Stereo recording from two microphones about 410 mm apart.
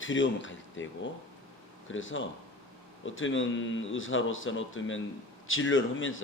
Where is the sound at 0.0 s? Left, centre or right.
Left.